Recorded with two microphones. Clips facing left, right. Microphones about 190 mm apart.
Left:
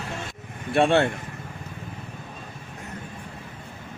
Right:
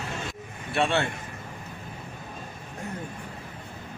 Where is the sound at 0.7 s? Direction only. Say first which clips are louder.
Left 6 dB; 50° left (ahead or behind).